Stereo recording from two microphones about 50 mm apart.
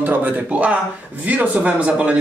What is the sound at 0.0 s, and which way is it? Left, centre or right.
Speech, right.